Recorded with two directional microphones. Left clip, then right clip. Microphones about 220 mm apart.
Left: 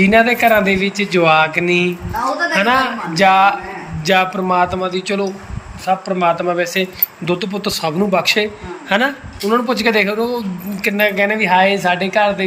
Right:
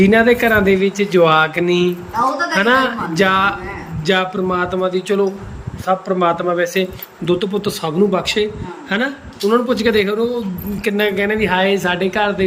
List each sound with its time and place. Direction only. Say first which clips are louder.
0.0 s speech: left 1 dB; 15° right (ahead or behind)